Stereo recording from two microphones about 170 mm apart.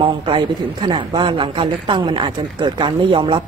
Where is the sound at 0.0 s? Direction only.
30° right (ahead or behind).